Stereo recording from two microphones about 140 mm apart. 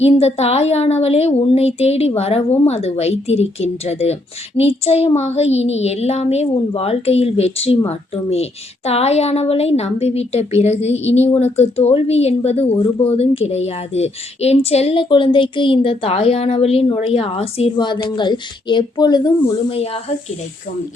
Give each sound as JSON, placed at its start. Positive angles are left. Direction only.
{"t": 0.0, "sound": "speech", "side_deg": 50}
{"t": 17.7, "sound": "speech", "side_deg": 30}